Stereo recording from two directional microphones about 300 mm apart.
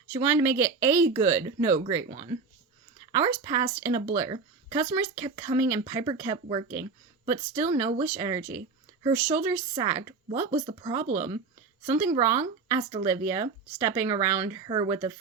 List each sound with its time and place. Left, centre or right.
0.1 s speech: centre
2.0 s speech: centre
11.9 s speech: centre